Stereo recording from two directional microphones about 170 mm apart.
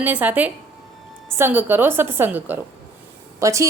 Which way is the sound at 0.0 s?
10° right (ahead or behind).